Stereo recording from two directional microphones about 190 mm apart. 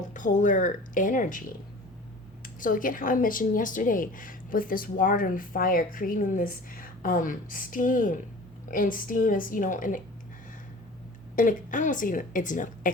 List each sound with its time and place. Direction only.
0.1 s a woman's voice: 40° left (ahead or behind)
2.6 s a woman's voice: 45° left (ahead or behind)
11.3 s a woman's voice: 45° left (ahead or behind)